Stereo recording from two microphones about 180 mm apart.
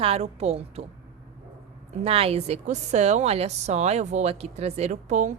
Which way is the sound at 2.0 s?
35° right (ahead or behind).